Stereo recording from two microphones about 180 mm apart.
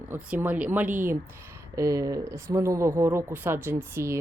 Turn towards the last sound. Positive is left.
turn(degrees=-15)  # may be behind; listen again after turning